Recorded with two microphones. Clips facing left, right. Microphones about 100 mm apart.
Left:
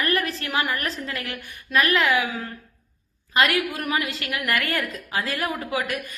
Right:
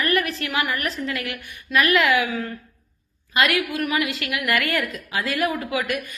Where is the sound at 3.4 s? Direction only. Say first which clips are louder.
Right 2 dB; 30° left (ahead or behind).